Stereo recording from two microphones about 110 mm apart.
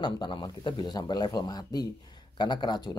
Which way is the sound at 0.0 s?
45° left (ahead or behind).